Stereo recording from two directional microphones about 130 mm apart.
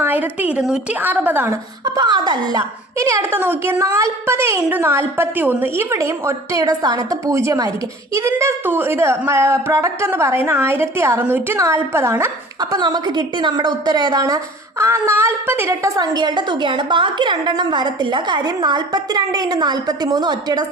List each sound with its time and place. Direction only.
0.0 s a woman's voice: 15° right (ahead or behind)
1.8 s a woman's voice: 30° right (ahead or behind)
12.5 s a woman's voice: 30° right (ahead or behind)